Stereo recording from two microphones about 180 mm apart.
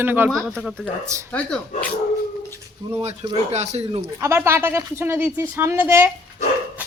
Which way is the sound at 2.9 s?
35° right (ahead or behind).